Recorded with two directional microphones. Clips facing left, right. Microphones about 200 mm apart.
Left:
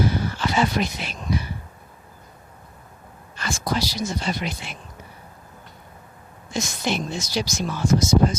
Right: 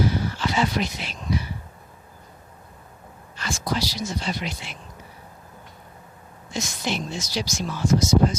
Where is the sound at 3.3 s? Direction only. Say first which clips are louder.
Left 1 dB; 50° left (ahead or behind).